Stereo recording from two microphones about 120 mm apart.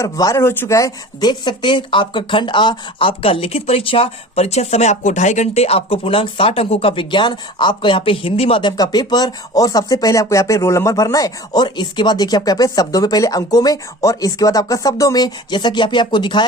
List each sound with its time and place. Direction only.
0.0 s speech: 30° left (ahead or behind); by 8.7 s 50° left (ahead or behind)
8.7 s speech: 35° left (ahead or behind)